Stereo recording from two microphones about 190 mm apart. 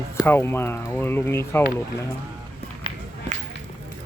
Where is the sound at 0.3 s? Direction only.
10° left (ahead or behind).